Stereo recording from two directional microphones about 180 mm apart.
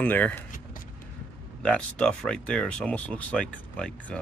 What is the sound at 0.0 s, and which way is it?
Speech, 10° left (ahead or behind).